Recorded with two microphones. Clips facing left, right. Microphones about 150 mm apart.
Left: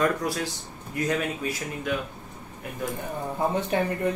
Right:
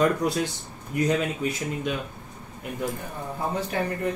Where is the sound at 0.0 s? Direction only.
20° right (ahead or behind).